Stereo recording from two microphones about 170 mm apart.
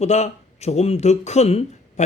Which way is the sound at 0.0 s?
40° left (ahead or behind).